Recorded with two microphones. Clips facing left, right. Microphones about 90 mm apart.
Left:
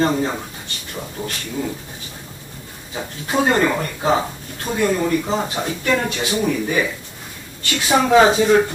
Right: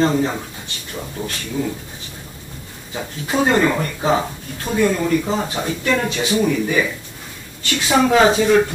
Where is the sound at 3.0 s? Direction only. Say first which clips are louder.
Even; 10° left (ahead or behind).